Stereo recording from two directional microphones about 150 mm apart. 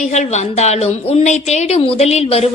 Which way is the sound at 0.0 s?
50° left (ahead or behind).